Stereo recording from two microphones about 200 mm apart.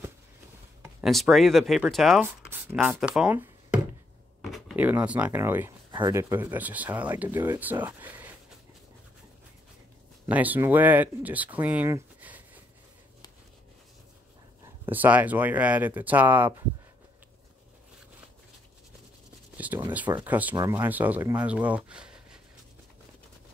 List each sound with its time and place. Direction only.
0.8 s speech: centre (ahead or behind)
2.5 s a sound: 10° right (ahead or behind)
4.4 s speech: centre (ahead or behind)
5.9 s speech: 20° right (ahead or behind)
10.2 s speech: 10° right (ahead or behind)
14.9 s speech: 10° right (ahead or behind)
19.5 s a sound: 10° right (ahead or behind)
20.2 s speech: 10° right (ahead or behind)